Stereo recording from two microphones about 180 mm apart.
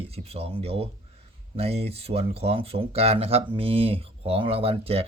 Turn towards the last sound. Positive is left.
turn(degrees=-35)  # may be behind; listen again after turning